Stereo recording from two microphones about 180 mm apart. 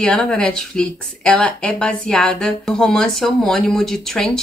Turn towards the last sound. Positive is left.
turn(degrees=0)  # may be behind; listen again after turning